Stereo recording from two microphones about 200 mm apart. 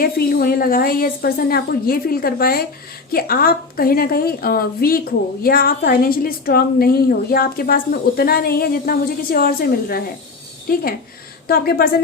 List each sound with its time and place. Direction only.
0.0 s a woman's voice: 50° left (ahead or behind)